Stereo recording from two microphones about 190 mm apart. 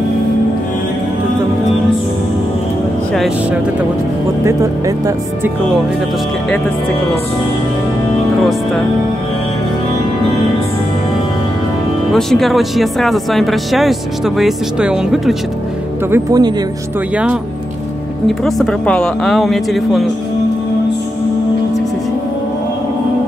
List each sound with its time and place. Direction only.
4.5 s speech: 15° right (ahead or behind)
12.1 s speech: centre (ahead or behind)
16.1 s speech: 20° right (ahead or behind)
17.1 s speech: 5° right (ahead or behind)
18.4 s speech: centre (ahead or behind)